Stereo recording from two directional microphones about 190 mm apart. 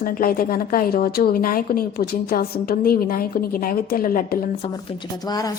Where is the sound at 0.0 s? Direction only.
50° left (ahead or behind).